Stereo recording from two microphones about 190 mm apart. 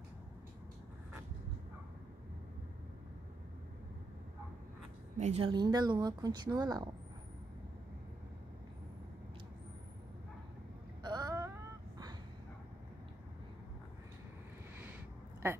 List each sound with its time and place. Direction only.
5.1 s a woman's voice: 35° right (ahead or behind)
5.5 s a woman's voice: 20° right (ahead or behind)
11.0 s vehicle: 20° right (ahead or behind)